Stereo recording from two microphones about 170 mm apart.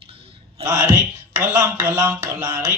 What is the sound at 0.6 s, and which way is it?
Speech, 15° right (ahead or behind).